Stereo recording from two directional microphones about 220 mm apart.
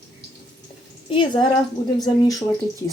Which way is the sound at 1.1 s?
20° left (ahead or behind).